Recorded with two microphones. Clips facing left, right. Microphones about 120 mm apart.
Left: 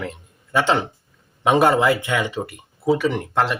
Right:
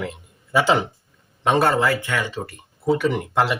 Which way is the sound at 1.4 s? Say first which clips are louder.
Left 2 dB; 10° left (ahead or behind).